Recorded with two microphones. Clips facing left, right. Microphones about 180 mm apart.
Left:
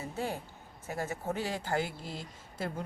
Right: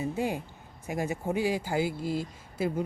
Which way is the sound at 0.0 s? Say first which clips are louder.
Right 6 dB; 15° right (ahead or behind).